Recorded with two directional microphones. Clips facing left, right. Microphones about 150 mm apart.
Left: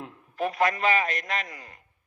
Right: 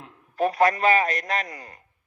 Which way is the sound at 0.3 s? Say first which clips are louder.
Right 5 dB; 40° right (ahead or behind).